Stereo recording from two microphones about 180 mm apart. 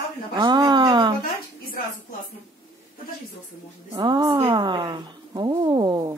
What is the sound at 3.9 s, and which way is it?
Speech, 20° right (ahead or behind).